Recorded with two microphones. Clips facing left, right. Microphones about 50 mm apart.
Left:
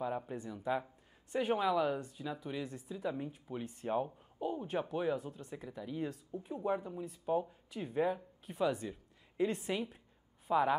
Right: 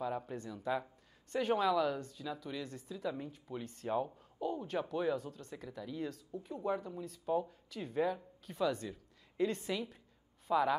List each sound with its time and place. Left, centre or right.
0.0 s speech: centre